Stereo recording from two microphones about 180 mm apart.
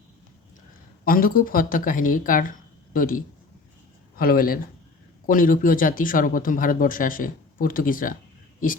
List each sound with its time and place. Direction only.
1.0 s speech: 50° left (ahead or behind)
4.2 s speech: 55° left (ahead or behind)